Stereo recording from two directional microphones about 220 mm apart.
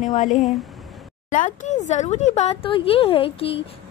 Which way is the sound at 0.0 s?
35° left (ahead or behind).